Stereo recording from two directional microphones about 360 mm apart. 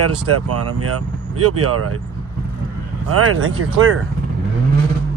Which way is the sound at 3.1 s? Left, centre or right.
Right.